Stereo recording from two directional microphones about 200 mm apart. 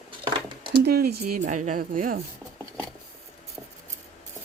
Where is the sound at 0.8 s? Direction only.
50° right (ahead or behind).